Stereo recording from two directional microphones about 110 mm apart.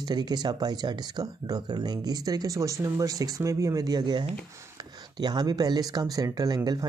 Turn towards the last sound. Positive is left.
turn(degrees=-35)  # may be behind; listen again after turning